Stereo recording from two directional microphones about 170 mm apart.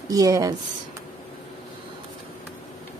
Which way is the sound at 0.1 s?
20° right (ahead or behind).